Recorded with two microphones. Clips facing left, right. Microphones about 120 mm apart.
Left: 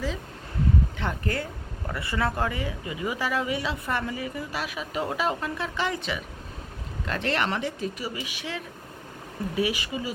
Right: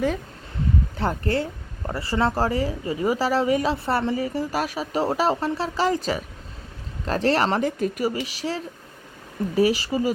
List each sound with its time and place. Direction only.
0.9 s a woman's voice: 35° right (ahead or behind)